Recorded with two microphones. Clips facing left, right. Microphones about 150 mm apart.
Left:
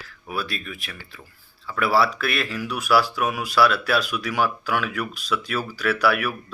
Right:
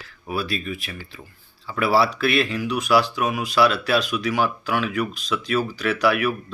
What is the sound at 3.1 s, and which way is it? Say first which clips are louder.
Speech: right 1 dB; 15° right (ahead or behind).